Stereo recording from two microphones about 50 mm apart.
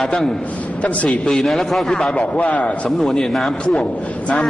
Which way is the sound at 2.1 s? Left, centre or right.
Left.